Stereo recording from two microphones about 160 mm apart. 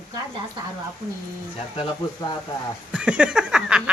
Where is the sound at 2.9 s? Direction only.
5° right (ahead or behind).